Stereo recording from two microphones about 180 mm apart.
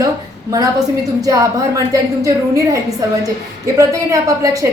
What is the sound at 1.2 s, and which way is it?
A woman's voice, 20° right (ahead or behind).